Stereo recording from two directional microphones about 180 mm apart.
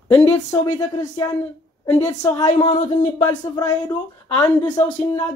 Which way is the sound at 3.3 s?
20° left (ahead or behind).